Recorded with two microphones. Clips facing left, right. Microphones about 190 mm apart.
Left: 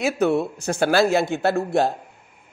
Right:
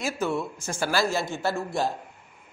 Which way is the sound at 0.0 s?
65° left (ahead or behind).